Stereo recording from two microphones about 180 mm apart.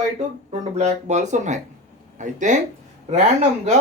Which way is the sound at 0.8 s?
40° right (ahead or behind).